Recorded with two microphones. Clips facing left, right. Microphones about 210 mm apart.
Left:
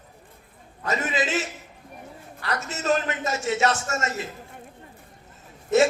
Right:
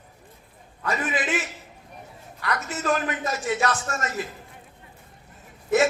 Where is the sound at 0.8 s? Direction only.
25° left (ahead or behind).